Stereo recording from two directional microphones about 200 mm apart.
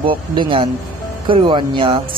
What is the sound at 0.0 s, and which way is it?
Speech, 25° right (ahead or behind).